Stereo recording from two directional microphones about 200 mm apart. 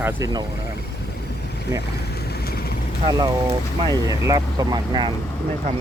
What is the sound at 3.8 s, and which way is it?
Speech, 20° right (ahead or behind).